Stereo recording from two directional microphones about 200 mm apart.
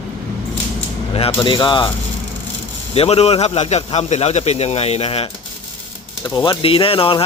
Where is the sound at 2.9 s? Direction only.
30° left (ahead or behind).